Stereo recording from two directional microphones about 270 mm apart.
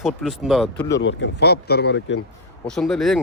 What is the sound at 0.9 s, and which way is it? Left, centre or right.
Speech, left.